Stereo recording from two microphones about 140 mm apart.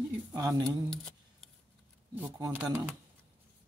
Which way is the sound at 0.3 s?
30° right (ahead or behind).